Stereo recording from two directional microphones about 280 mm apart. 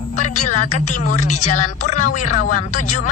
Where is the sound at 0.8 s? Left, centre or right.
Left.